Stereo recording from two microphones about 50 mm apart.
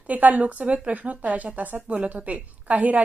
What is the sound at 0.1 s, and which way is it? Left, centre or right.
Speech, right.